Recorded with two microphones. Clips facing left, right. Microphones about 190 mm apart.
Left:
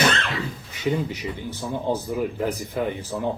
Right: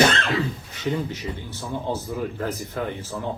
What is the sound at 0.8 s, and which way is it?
Speech, 15° left (ahead or behind).